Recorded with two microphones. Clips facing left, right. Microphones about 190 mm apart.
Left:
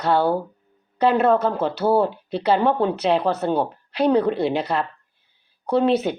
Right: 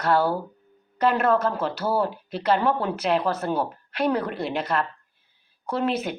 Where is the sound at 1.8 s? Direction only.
25° left (ahead or behind).